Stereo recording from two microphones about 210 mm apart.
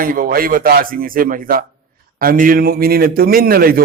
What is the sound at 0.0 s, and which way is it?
A man's voice, 45° right (ahead or behind).